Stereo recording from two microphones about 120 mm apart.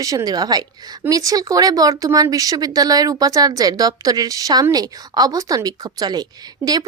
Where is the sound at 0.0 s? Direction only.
30° right (ahead or behind).